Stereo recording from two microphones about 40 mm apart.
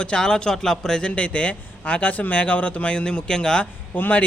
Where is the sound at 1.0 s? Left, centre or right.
Left.